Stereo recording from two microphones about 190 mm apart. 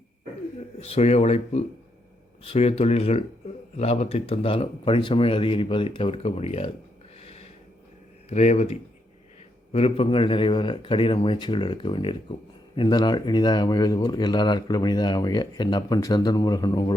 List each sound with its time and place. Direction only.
0.8 s speech: 35° left (ahead or behind)
7.2 s snort: 35° left (ahead or behind)
8.3 s speech: 35° left (ahead or behind)